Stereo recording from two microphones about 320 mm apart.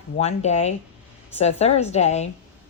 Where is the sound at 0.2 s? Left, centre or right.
Centre.